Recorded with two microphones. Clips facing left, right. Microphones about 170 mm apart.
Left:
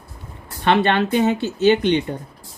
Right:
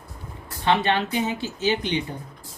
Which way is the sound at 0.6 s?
65° left (ahead or behind).